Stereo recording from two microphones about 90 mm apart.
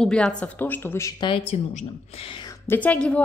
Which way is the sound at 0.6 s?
25° left (ahead or behind).